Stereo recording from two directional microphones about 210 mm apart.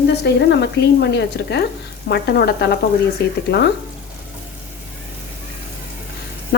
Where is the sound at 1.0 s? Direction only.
50° left (ahead or behind).